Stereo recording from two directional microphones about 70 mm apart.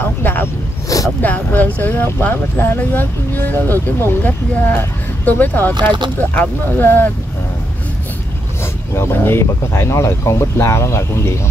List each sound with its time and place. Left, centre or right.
0.0 s a sound: left
0.8 s a sound: left
1.2 s speech: left
5.8 s speech: right
6.1 s speech: left
8.9 s speech: left